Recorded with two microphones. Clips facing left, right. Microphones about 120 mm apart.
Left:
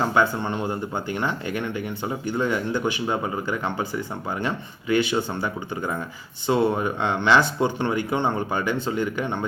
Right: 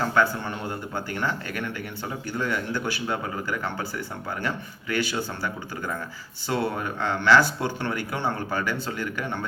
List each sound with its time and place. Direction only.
0.0 s speech: 20° left (ahead or behind)